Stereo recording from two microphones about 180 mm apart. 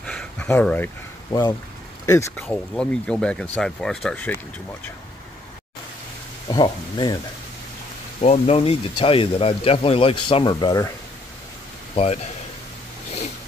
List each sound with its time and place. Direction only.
0.0 s a sound: 5° left (ahead or behind)
1.3 s speech: 30° left (ahead or behind)
2.0 s speech: 15° left (ahead or behind)
6.5 s speech: 25° left (ahead or behind)
8.2 s speech: 35° left (ahead or behind)
11.9 s speech: 35° left (ahead or behind)